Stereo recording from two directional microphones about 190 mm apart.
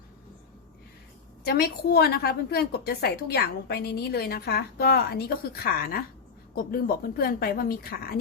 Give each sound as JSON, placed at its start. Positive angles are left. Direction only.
{"t": 1.5, "sound": "a woman's voice", "side_deg": 55}